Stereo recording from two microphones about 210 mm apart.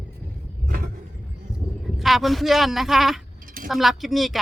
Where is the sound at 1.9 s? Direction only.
Centre (ahead or behind).